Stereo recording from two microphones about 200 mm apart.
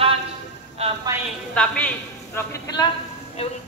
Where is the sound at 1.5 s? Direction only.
5° left (ahead or behind).